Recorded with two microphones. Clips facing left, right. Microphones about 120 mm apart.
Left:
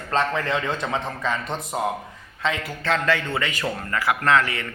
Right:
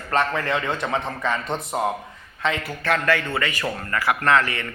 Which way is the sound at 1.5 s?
20° right (ahead or behind).